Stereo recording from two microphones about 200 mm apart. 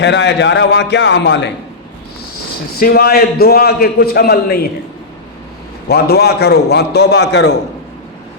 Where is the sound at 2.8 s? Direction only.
50° left (ahead or behind).